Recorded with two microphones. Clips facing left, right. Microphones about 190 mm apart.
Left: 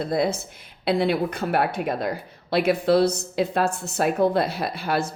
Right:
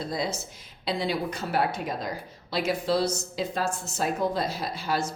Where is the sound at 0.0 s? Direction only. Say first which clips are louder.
Left 7 dB; 55° left (ahead or behind).